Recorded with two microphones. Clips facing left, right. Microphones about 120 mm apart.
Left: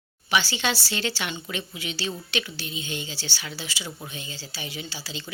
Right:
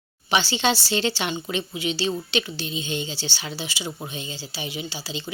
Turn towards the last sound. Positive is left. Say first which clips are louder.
# right 4 dB
turn(degrees=-20)  # may be behind; listen again after turning